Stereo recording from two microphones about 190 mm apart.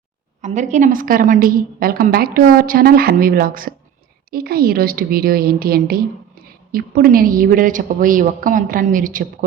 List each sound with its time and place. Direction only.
0.4 s a woman's voice: 40° right (ahead or behind)